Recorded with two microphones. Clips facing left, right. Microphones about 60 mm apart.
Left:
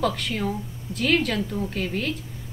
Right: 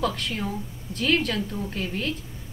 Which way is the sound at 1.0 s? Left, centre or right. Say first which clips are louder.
Left 1 dB; left.